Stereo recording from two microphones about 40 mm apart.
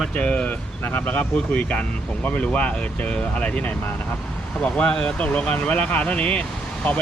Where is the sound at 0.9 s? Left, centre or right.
Left.